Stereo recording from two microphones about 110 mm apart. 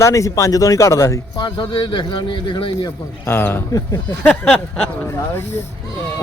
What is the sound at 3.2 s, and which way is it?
Speech, 20° left (ahead or behind).